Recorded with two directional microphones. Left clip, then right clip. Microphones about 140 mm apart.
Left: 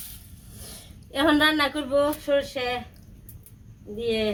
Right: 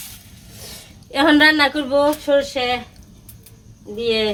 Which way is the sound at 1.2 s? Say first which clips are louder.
Right 7 dB; 15° right (ahead or behind).